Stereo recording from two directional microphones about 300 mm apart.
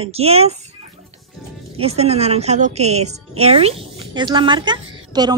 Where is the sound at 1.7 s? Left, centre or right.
Centre.